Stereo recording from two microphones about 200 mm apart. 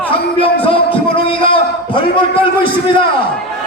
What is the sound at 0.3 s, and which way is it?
Music, 30° left (ahead or behind).